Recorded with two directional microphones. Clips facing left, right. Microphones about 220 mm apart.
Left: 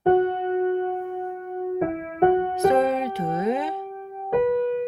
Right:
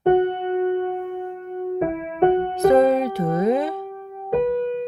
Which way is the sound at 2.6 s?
35° right (ahead or behind).